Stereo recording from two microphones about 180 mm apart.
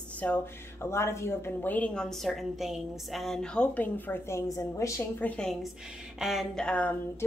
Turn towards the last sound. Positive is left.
turn(degrees=10)  # may be behind; listen again after turning